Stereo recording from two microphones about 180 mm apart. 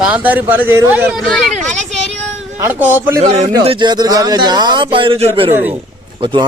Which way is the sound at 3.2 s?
35° right (ahead or behind).